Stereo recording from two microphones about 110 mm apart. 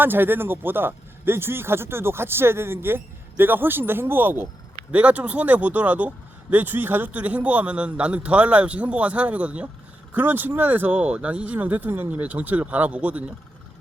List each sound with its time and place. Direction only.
0.0 s speech: 20° right (ahead or behind)